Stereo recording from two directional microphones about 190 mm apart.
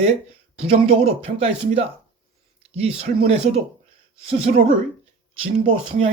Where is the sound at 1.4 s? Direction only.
30° right (ahead or behind).